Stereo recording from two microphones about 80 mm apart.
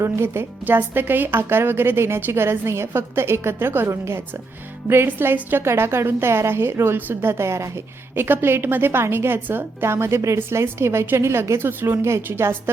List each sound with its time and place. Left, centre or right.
0.0 s a woman's voice: right